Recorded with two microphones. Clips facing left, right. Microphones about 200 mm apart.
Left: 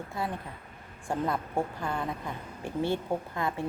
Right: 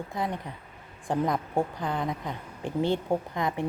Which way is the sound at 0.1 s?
15° right (ahead or behind).